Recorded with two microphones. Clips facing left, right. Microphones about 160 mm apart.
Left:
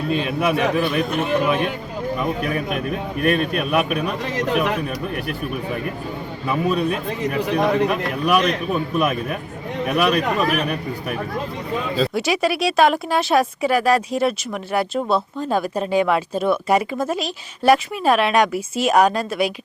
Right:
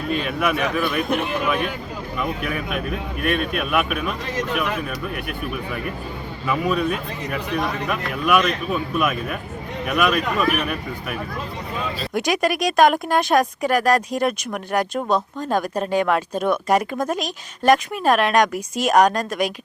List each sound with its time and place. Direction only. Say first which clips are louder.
0.2 s a man's voice: left 3 dB; 30° left (ahead or behind)
6.5 s a man's voice: left 1 dB; 35° left (ahead or behind)
12.1 s speech: even; centre (ahead or behind)